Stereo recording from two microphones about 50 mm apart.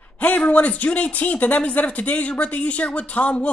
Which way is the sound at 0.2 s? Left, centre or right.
Left.